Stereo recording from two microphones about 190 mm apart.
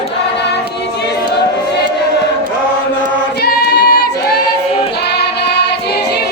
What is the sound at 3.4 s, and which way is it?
Choir, 55° left (ahead or behind).